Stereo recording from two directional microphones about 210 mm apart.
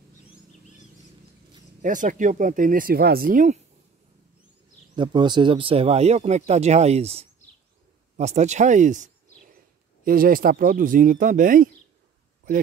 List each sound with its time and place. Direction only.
1.8 s speech: 35° right (ahead or behind)
4.9 s speech: 20° right (ahead or behind); by 11.7 s 40° right (ahead or behind)